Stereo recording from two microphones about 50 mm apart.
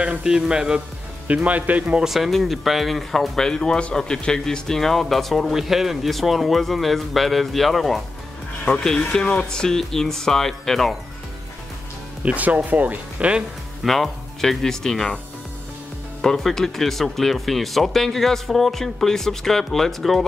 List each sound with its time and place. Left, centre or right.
0.2 s speech: centre
0.7 s speech: right
2.0 s speech: centre
8.6 s speech: centre
12.3 s speech: right
13.8 s speech: centre
16.2 s speech: centre